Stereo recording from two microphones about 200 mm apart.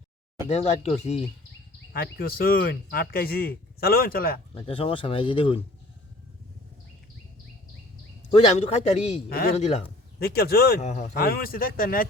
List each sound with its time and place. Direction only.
0.4 s a man's voice: 30° left (ahead or behind)
1.9 s speech: 50° left (ahead or behind)
4.5 s speech: 25° left (ahead or behind)
8.3 s a man's voice: 30° left (ahead or behind)
9.3 s speech: 50° left (ahead or behind)
9.6 s a man's voice: 30° left (ahead or behind)
10.2 s speech: 50° left (ahead or behind)
10.8 s a man's voice: 35° left (ahead or behind)
11.2 s speech: 50° left (ahead or behind)